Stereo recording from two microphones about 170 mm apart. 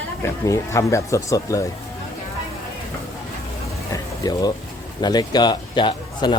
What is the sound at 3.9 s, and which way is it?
Vehicle, 20° left (ahead or behind).